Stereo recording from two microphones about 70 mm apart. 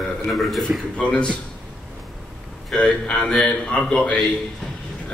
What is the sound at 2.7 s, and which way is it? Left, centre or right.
A man's voice, centre.